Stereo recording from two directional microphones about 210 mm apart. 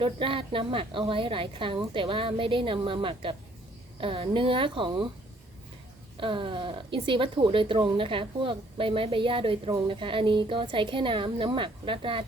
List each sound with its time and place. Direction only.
0.0 s speech: 25° right (ahead or behind)
6.1 s speech: 25° right (ahead or behind)